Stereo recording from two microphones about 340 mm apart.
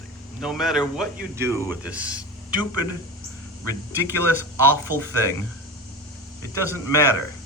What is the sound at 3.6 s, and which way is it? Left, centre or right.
Speech, centre.